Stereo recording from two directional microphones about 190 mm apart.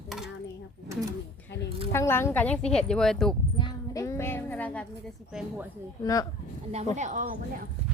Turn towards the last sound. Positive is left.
turn(degrees=-40)  # may be behind; listen again after turning